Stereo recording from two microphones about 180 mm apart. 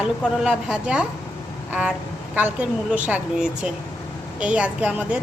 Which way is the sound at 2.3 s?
10° right (ahead or behind).